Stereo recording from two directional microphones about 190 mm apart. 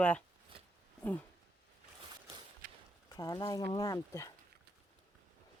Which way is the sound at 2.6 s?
45° right (ahead or behind).